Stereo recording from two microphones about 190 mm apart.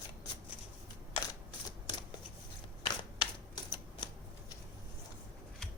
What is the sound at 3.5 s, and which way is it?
Typewriter, 20° left (ahead or behind).